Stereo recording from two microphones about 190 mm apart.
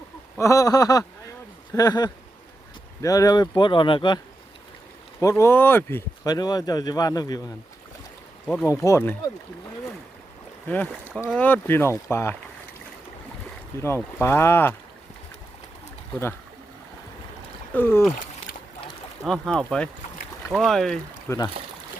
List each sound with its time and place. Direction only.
0.3 s speech: 15° left (ahead or behind)
5.4 s speech: 10° left (ahead or behind)
8.6 s speech: 15° left (ahead or behind)
10.7 s speech: 10° left (ahead or behind)
11.1 s speech: 5° right (ahead or behind)
11.3 s speech: 10° left (ahead or behind)
13.8 s speech: 15° left (ahead or behind)
17.7 s speech: 10° left (ahead or behind)
19.2 s speech: centre (ahead or behind)
21.2 s speech: 20° left (ahead or behind)